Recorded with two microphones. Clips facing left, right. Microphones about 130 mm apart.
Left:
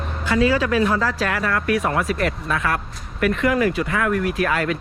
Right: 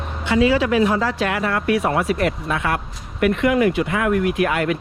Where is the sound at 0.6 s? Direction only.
25° right (ahead or behind).